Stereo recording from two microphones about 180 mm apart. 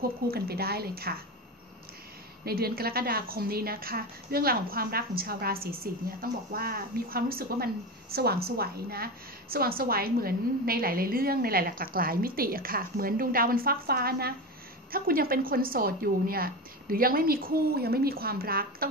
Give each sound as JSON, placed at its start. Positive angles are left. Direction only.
{"t": 0.3, "sound": "a woman's voice", "side_deg": -60}
{"t": 2.4, "sound": "a woman's voice", "side_deg": -60}